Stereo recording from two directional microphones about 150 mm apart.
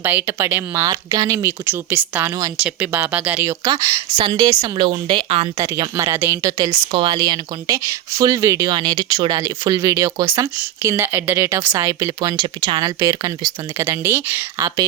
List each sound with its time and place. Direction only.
0.0 s speech: 15° right (ahead or behind)
3.6 s speech: 25° right (ahead or behind)
4.9 s a woman's voice: 35° right (ahead or behind)
5.5 s speech: 25° right (ahead or behind)